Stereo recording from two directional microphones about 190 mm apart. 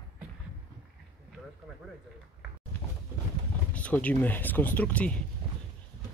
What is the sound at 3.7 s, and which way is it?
Speech, 5° left (ahead or behind).